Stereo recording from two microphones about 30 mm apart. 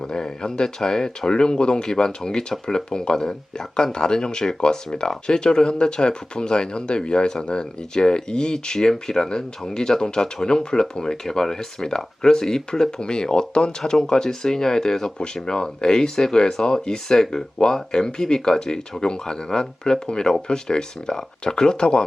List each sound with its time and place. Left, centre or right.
0.0 s speech: left